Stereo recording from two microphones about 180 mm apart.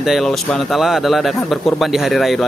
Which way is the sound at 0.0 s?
Centre (ahead or behind).